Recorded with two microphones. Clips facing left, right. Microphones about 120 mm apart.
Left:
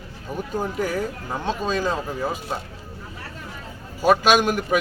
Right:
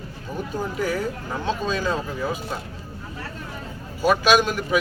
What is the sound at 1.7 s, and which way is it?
Speech, 45° left (ahead or behind).